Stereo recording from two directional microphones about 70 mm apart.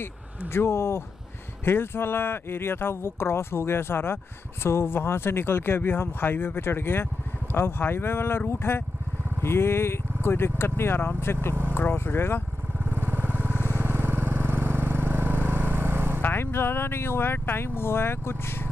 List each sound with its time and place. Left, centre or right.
0.5 s speech: left
12.7 s vehicle: right
16.2 s speech: left